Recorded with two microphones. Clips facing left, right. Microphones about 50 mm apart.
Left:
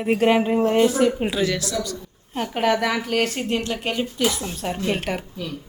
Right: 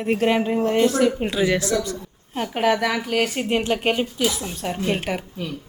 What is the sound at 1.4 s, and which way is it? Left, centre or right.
Speech, right.